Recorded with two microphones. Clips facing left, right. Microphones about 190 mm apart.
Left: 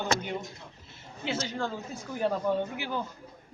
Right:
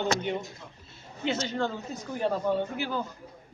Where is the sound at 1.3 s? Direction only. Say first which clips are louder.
Right 3 dB; 5° left (ahead or behind).